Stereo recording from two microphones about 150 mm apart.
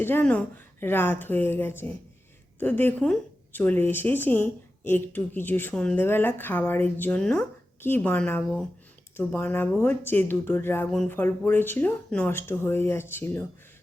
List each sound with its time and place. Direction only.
0.0 s speech: 15° left (ahead or behind)